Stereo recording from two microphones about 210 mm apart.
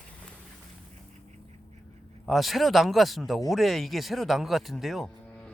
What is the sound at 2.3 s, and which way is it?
Speech, centre (ahead or behind).